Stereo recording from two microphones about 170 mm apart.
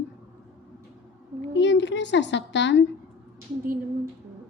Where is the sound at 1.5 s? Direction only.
90° left.